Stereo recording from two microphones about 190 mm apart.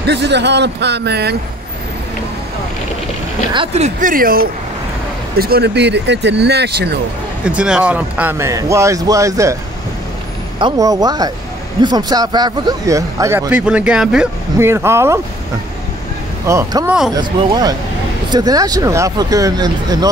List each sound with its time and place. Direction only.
0.0 s speech: 65° right (ahead or behind)
3.5 s speech: 30° right (ahead or behind); by 7.0 s 60° right (ahead or behind)
7.4 s speech: 5° right (ahead or behind)
10.6 s speech: 20° right (ahead or behind)
16.4 s speech: 15° right (ahead or behind)